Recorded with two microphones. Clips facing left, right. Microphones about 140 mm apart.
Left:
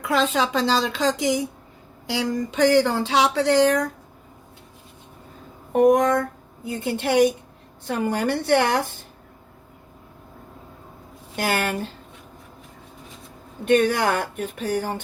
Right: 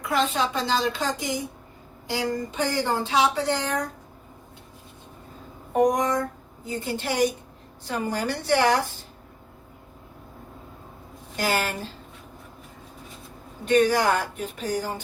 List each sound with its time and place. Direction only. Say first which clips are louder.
0.0 s a woman's voice: left 3 dB; 90° left
2.5 s speech: left 7 dB; 85° left
5.8 s speech: left 5 dB; 60° left (ahead or behind)
11.3 s speech: left 2 dB; 55° left (ahead or behind)
13.7 s speech: left 1 dB; 55° left (ahead or behind)